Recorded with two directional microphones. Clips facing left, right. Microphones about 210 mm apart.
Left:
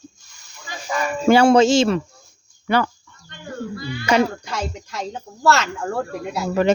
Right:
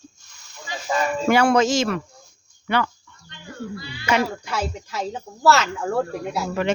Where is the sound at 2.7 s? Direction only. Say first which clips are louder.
Left 3 dB; 40° left (ahead or behind).